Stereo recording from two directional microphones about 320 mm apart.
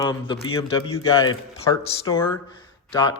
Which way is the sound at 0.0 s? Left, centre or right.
Centre.